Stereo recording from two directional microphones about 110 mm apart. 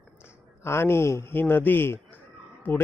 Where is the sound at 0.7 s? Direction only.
20° left (ahead or behind).